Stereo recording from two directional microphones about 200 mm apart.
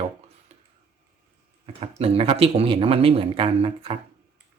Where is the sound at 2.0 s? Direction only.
30° right (ahead or behind).